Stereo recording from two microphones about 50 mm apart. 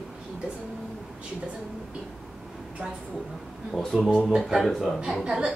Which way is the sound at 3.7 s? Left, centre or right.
Centre.